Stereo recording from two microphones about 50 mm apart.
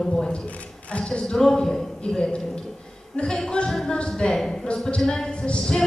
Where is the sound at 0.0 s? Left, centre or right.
Centre.